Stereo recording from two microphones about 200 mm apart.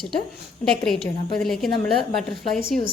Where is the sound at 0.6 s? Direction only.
Centre (ahead or behind).